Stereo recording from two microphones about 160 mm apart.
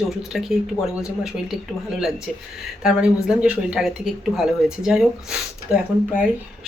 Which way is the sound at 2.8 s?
5° right (ahead or behind).